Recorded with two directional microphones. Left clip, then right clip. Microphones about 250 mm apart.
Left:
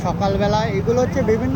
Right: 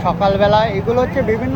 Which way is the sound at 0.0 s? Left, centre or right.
Centre.